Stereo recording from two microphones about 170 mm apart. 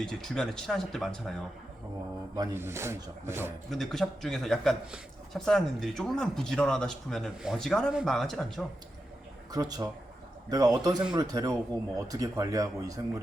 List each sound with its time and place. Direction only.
0.0 s speech: 5° left (ahead or behind)
2.3 s speech: 20° right (ahead or behind)
3.7 s speech: centre (ahead or behind)
9.5 s speech: 20° right (ahead or behind)